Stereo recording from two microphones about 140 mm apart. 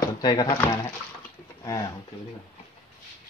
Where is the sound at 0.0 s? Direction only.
30° left (ahead or behind).